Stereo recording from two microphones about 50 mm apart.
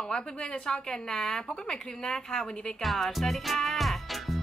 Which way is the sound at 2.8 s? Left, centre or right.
Centre.